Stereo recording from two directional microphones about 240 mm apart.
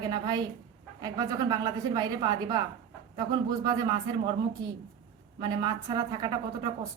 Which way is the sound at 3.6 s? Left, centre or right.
Centre.